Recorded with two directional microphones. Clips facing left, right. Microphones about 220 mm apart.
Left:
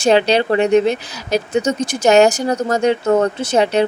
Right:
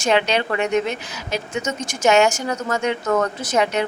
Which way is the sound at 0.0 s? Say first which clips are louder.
Left 6 dB; 35° left (ahead or behind).